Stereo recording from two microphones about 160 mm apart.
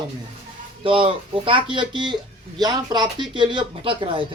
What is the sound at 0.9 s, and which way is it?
Speech, 35° right (ahead or behind).